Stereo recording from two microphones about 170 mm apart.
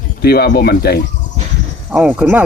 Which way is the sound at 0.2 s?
65° left (ahead or behind).